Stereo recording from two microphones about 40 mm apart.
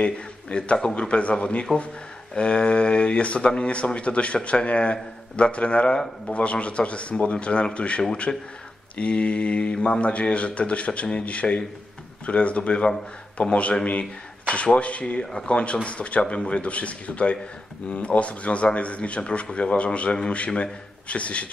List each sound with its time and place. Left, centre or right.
0.0 s a man's voice: left
10.9 s speech: left
11.2 s speech: left